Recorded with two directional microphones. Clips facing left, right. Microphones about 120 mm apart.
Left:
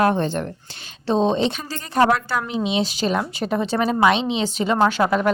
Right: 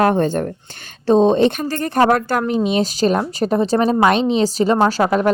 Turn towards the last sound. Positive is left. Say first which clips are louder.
# right 3 dB
turn(degrees=-40)  # may be behind; listen again after turning